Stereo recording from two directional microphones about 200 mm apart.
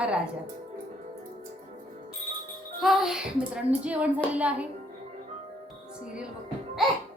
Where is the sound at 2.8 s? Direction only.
Centre (ahead or behind).